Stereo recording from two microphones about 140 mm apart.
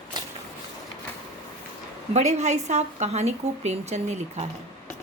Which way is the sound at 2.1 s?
55° right (ahead or behind).